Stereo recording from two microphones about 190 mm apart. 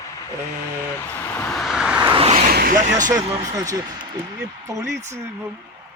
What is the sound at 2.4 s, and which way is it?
Speech, 50° right (ahead or behind).